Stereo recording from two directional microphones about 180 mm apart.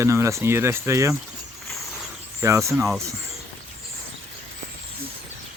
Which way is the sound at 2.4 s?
15° right (ahead or behind).